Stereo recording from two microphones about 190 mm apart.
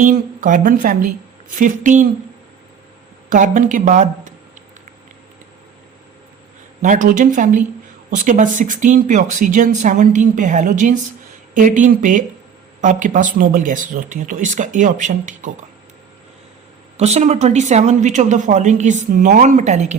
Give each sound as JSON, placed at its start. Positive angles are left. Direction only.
{"t": 0.0, "sound": "speech", "side_deg": -45}
{"t": 3.2, "sound": "speech", "side_deg": -45}
{"t": 6.8, "sound": "speech", "side_deg": -45}
{"t": 17.0, "sound": "speech", "side_deg": -35}